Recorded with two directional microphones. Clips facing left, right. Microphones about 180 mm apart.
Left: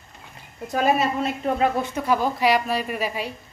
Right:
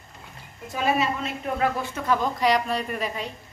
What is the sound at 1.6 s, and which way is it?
A woman's voice, 20° left (ahead or behind).